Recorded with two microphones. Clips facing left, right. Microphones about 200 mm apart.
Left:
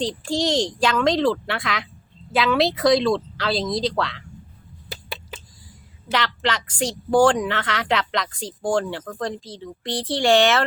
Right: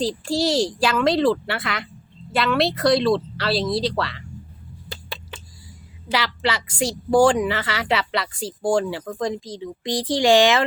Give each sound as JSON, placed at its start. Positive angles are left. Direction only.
{"t": 0.0, "sound": "a woman's voice", "side_deg": -5}
{"t": 6.1, "sound": "a woman's voice", "side_deg": -10}